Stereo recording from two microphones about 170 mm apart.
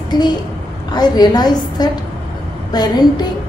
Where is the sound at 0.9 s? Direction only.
25° left (ahead or behind).